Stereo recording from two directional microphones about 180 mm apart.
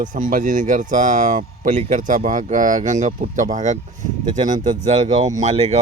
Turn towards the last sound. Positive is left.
turn(degrees=-35)  # may be behind; listen again after turning